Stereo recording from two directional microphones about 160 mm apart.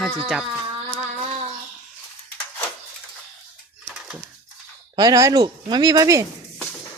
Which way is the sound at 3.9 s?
5° right (ahead or behind).